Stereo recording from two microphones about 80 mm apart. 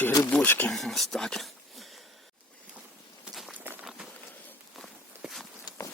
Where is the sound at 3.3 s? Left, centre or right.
Centre.